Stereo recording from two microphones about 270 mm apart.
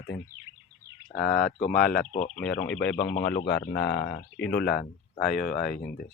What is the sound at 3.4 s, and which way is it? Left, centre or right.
Speech, left.